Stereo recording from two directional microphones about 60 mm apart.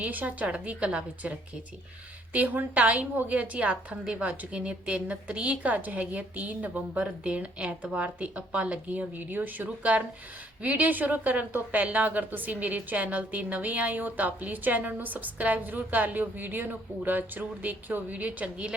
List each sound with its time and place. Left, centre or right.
0.0 s a woman's voice: right